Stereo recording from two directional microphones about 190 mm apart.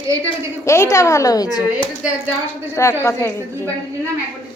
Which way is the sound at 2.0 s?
5° right (ahead or behind).